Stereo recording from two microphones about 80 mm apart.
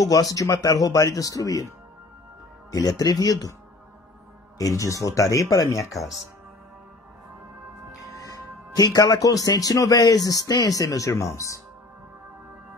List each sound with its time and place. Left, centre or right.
0.0 s a man's voice: left
2.7 s a man's voice: left
4.6 s a man's voice: left
8.2 s a man's voice: left